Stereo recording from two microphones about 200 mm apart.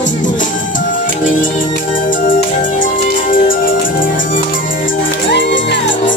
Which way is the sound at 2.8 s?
45° left (ahead or behind).